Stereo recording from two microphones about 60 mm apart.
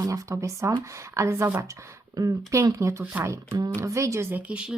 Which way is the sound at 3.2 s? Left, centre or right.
Right.